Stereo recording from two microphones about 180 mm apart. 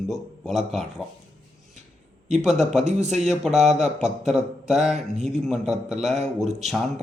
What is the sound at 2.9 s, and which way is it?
Speech, 40° right (ahead or behind).